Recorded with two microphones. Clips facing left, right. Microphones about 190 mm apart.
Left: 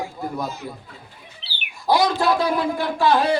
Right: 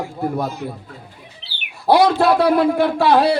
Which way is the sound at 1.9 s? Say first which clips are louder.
Right 5 dB; 65° right (ahead or behind).